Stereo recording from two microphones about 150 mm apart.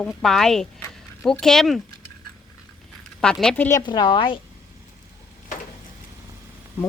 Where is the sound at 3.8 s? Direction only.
30° left (ahead or behind).